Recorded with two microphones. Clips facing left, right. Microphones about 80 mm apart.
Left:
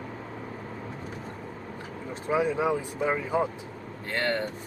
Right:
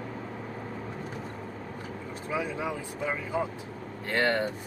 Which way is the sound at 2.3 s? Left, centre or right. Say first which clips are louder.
Left 7 dB; left.